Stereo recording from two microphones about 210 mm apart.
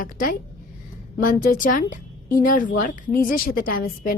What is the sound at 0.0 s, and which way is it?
A woman's voice, 40° left (ahead or behind).